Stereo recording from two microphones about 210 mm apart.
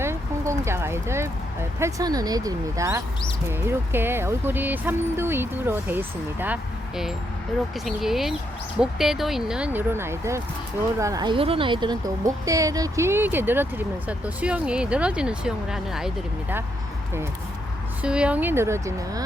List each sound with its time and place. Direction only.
0.0 s a sound: 15° right (ahead or behind)
1.8 s speech: 15° right (ahead or behind)
18.0 s speech: 5° right (ahead or behind)